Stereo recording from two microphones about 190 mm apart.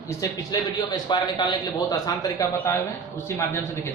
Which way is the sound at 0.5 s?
20° left (ahead or behind).